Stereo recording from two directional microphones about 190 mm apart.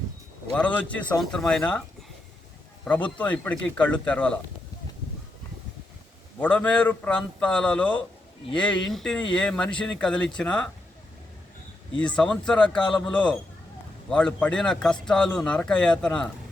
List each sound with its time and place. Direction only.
0.5 s a man's voice: 5° left (ahead or behind)
2.8 s a man's voice: 5° left (ahead or behind)
6.4 s a man's voice: 10° left (ahead or behind)
11.9 s speech: 5° left (ahead or behind)